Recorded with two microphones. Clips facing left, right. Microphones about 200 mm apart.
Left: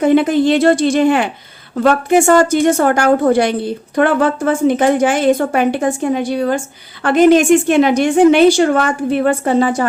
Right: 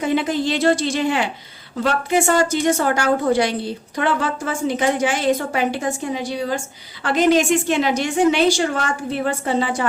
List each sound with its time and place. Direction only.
0.0 s a woman's voice: 55° left (ahead or behind)